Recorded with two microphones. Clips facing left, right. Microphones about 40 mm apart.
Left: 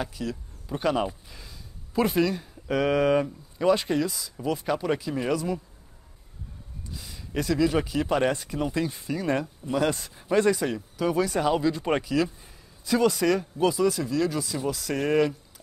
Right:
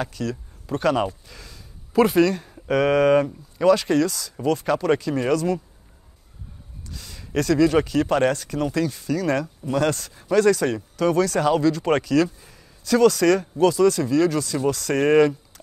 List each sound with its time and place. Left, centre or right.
0.0 s speech: centre
1.3 s a sound: centre
2.0 s speech: centre
3.6 s speech: right
4.0 s speech: centre
6.9 s a sound: centre
7.8 s speech: centre
10.7 s speech: centre